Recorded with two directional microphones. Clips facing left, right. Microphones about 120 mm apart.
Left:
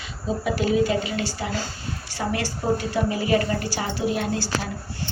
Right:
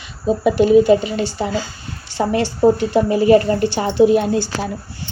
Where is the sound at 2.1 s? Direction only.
25° right (ahead or behind).